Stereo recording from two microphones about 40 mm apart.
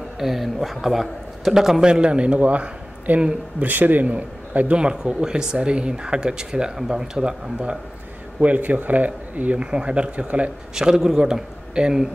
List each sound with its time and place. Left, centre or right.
0.2 s a man's voice: centre
1.8 s a man's voice: right
3.5 s speech: right
4.0 s a man's voice: right
4.7 s speech: right
8.4 s speech: right
9.6 s speech: right
10.7 s a man's voice: centre